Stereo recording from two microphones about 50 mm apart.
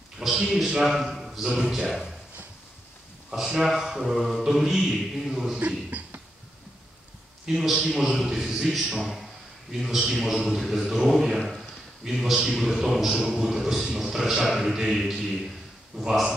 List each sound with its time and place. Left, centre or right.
0.2 s a man's voice: centre
3.3 s a man's voice: centre
5.6 s a sound: right
7.4 s a man's voice: centre